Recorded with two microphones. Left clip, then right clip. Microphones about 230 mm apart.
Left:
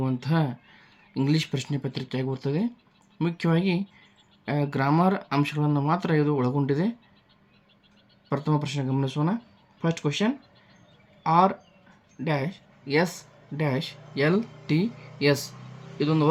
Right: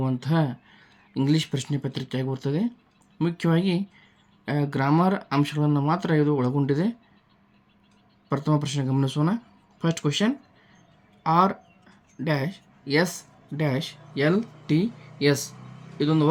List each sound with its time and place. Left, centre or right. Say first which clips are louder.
0.0 s speech: right 1 dB; centre
8.3 s speech: right 2 dB; centre